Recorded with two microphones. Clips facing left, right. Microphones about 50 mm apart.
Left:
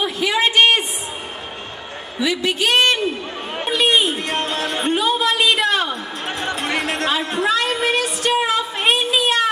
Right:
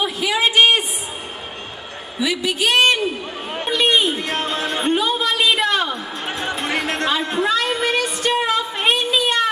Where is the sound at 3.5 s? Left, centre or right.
Centre.